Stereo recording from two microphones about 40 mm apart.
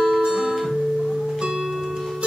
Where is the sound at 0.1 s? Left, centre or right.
Centre.